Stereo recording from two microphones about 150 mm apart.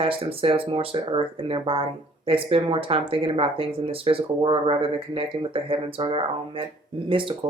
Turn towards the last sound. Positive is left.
turn(degrees=-35)  # may be behind; listen again after turning